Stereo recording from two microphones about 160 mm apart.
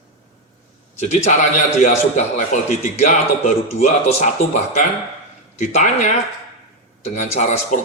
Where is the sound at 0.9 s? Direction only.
45° left (ahead or behind).